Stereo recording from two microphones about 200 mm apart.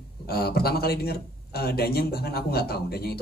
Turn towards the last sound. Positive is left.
turn(degrees=50)  # may be behind; listen again after turning